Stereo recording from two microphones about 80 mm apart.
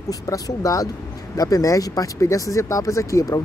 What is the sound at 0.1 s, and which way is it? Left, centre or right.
Speech, left.